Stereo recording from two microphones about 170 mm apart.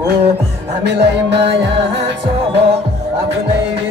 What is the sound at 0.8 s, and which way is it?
Music, 85° right.